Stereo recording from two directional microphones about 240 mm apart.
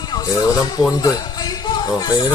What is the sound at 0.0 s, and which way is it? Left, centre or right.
Speech, centre.